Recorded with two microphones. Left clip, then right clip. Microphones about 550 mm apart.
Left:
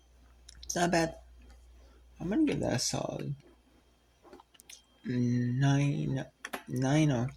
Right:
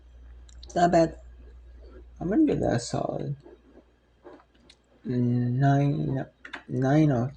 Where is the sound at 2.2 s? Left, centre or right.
Left.